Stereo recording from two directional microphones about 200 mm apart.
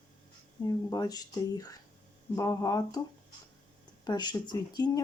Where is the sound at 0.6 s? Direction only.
20° left (ahead or behind).